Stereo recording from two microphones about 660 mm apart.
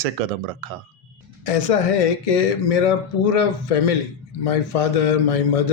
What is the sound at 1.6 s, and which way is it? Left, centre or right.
A man's voice, left.